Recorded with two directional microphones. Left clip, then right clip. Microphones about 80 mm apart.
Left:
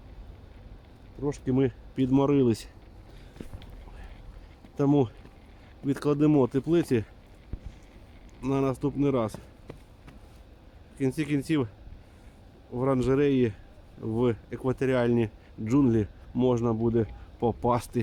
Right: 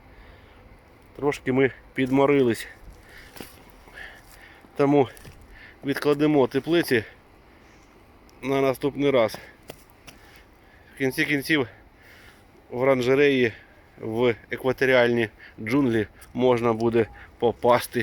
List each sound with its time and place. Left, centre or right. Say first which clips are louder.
1.5 s speech: right 5 dB; centre
2.1 s speech: right 4 dB; centre
4.8 s speech: right 5 dB; centre
5.8 s speech: right 3 dB; left
8.5 s speech: right 5 dB; centre
10.9 s speech: right 5 dB; left
12.7 s speech: right 6 dB; centre
16.5 s speech: right 6 dB; centre
17.4 s speech: right 6 dB; left